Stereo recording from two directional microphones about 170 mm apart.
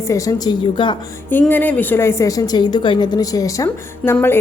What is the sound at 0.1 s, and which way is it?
Speech, 20° left (ahead or behind).